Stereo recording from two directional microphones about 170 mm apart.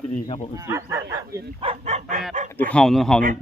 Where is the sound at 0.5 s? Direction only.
20° right (ahead or behind).